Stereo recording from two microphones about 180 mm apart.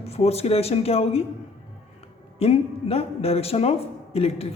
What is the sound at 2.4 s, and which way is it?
Speech, 35° left (ahead or behind).